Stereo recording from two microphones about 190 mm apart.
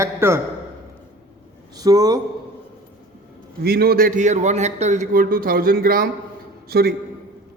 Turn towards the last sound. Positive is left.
turn(degrees=-55)  # may be behind; listen again after turning